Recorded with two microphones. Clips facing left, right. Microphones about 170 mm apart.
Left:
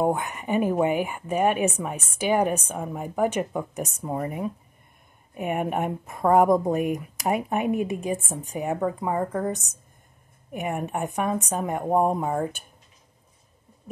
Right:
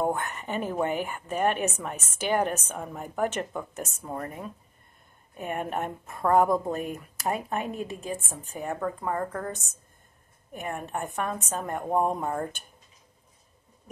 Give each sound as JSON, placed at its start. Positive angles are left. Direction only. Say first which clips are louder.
{"t": 0.0, "sound": "speech", "louder": "left 4 dB", "side_deg": 10}